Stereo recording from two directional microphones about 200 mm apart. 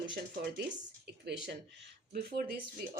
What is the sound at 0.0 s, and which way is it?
Speech, 55° right (ahead or behind).